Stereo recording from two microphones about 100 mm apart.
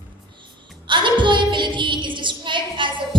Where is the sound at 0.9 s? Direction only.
55° right (ahead or behind).